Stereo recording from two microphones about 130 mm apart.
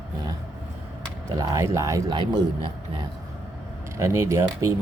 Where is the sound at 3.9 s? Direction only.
20° right (ahead or behind).